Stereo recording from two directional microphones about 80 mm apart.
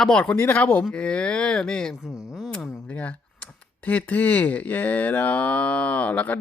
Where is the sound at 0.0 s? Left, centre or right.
Centre.